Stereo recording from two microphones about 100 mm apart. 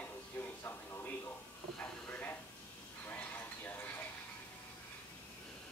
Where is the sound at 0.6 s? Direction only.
20° left (ahead or behind).